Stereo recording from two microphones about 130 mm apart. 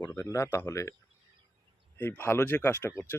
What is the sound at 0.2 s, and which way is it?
Speech, 20° left (ahead or behind).